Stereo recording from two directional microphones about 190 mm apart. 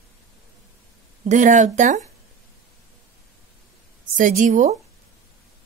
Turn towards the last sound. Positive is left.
turn(degrees=-40)  # may be behind; listen again after turning